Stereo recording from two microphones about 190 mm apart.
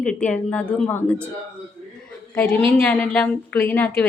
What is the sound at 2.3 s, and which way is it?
A woman's voice, 10° left (ahead or behind).